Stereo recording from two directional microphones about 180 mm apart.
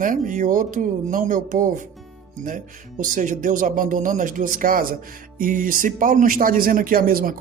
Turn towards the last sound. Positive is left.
turn(degrees=-55)  # may be behind; listen again after turning